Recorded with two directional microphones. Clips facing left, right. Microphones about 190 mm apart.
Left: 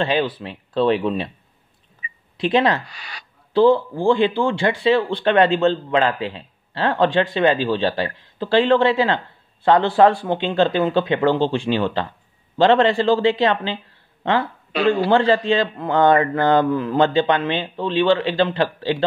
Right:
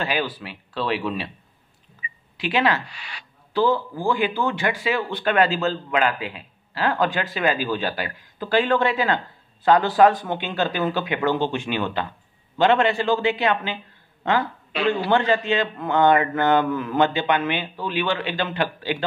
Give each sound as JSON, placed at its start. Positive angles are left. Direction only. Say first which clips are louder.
{"t": 0.0, "sound": "a man's voice", "louder": "left 5 dB", "side_deg": 30}
{"t": 2.0, "sound": "a sound", "louder": "left 8 dB", "side_deg": 30}
{"t": 4.4, "sound": "a man's voice", "louder": "left 4 dB", "side_deg": 30}